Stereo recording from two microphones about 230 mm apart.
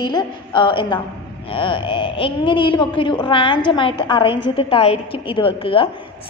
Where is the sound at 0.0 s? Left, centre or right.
Centre.